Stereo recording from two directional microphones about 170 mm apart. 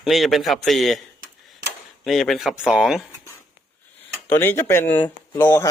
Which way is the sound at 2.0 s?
Centre (ahead or behind).